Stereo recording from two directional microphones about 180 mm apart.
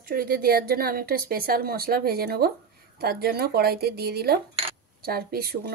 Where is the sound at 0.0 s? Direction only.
55° right (ahead or behind).